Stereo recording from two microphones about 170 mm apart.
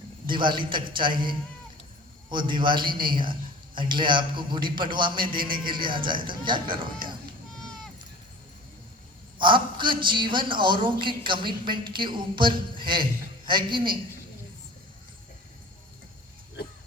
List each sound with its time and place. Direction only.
0.3 s a man's voice: 30° right (ahead or behind)
9.4 s a man's voice: 30° right (ahead or behind)